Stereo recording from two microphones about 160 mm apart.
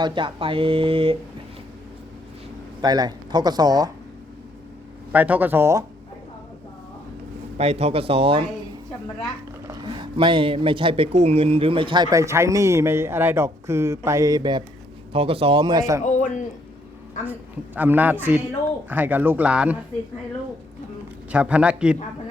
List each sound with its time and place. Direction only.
0.0 s speech: 30° right (ahead or behind)
2.8 s speech: 25° right (ahead or behind)
5.1 s speech: 10° right (ahead or behind)
7.6 s speech: 40° right (ahead or behind)
9.6 s speech: 30° right (ahead or behind)
12.1 s speech: 20° right (ahead or behind)
15.1 s speech: 35° right (ahead or behind)
17.7 s speech: 10° right (ahead or behind)
21.3 s speech: 10° right (ahead or behind)